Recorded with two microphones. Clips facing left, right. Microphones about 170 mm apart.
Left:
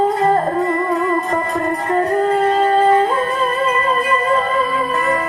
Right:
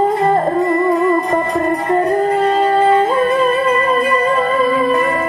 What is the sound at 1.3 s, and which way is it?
Music, 20° right (ahead or behind).